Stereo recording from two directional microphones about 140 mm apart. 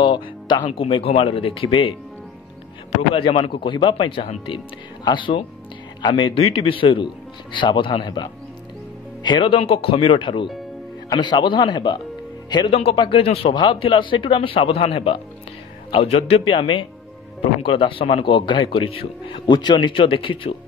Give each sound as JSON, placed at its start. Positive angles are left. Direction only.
{"t": 0.0, "sound": "a man's voice", "side_deg": 35}
{"t": 3.2, "sound": "a man's voice", "side_deg": 40}